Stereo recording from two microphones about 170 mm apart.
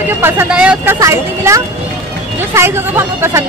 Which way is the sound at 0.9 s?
15° right (ahead or behind).